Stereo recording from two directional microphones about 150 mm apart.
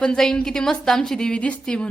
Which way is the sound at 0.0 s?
5° left (ahead or behind).